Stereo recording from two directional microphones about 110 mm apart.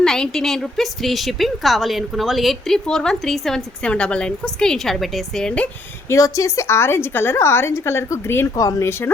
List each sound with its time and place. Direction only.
0.0 s a woman's voice: 5° left (ahead or behind)
6.1 s a woman's voice: 30° left (ahead or behind)